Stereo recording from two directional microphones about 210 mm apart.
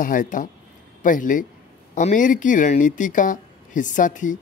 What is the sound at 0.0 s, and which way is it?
A woman's voice, 40° left (ahead or behind).